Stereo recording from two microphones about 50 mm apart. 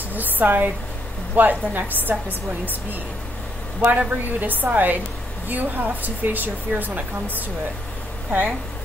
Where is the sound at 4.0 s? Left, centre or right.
Right.